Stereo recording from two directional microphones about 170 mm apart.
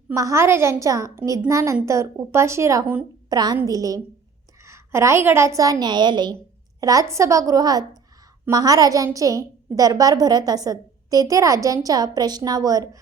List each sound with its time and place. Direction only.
0.1 s a woman's voice: 20° right (ahead or behind)